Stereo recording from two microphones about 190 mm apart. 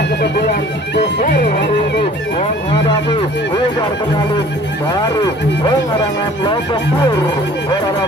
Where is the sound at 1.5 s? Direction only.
60° left (ahead or behind).